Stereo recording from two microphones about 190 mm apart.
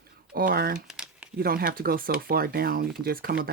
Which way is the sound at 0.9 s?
5° right (ahead or behind).